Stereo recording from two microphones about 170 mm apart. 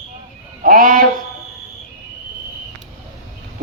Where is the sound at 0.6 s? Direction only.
55° right (ahead or behind).